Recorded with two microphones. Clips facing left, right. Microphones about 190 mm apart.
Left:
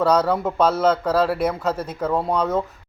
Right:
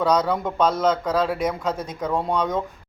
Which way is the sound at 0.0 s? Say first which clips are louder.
Left 2 dB; 10° left (ahead or behind).